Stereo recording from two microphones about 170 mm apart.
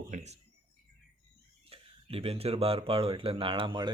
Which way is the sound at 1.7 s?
35° right (ahead or behind).